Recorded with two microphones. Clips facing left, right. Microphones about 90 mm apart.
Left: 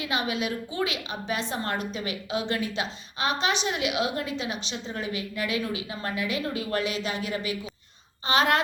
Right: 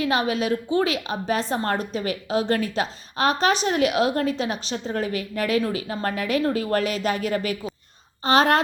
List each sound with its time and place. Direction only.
0.0 s a woman's voice: 40° right (ahead or behind)